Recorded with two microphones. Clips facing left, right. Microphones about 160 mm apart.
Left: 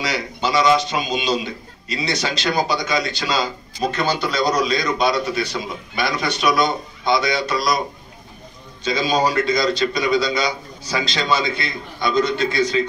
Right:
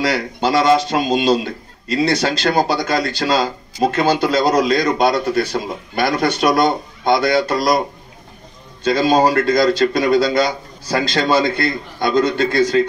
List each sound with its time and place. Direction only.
0.0 s a man's voice: 55° right (ahead or behind)
8.8 s a man's voice: 55° right (ahead or behind)